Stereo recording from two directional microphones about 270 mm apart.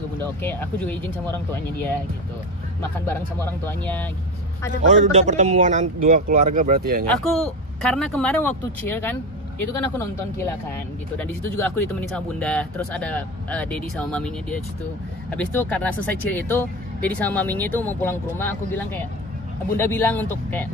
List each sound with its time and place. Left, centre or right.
0.2 s speech: centre
3.6 s speech: centre
4.8 s a man's voice: right
7.9 s speech: centre